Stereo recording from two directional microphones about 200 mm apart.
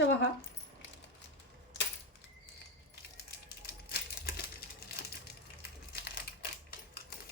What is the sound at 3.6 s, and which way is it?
Coin, 50° left (ahead or behind).